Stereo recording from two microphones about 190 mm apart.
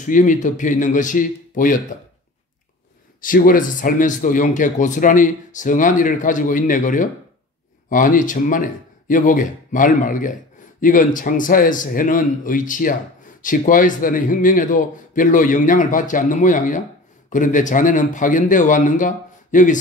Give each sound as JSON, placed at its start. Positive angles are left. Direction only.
{"t": 0.0, "sound": "speech", "side_deg": 40}
{"t": 3.2, "sound": "speech", "side_deg": 45}